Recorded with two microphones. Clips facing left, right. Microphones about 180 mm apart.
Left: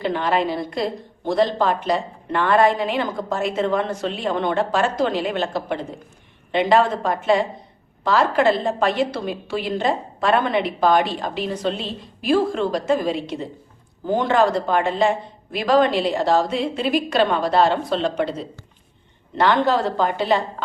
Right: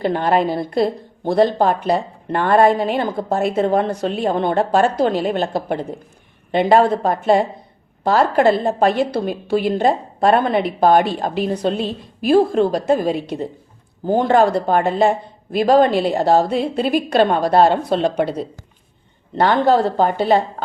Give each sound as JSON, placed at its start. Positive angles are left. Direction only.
{"t": 0.0, "sound": "a woman's voice", "side_deg": -45}
{"t": 0.7, "sound": "a woman's voice", "side_deg": -40}
{"t": 6.8, "sound": "a woman's voice", "side_deg": -35}
{"t": 19.7, "sound": "a woman's voice", "side_deg": -45}